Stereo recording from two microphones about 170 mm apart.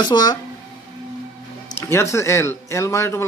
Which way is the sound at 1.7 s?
15° left (ahead or behind).